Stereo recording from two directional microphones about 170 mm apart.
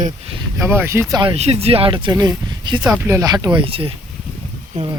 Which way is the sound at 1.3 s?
35° right (ahead or behind).